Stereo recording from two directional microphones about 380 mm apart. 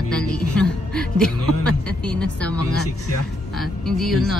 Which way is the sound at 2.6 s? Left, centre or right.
Left.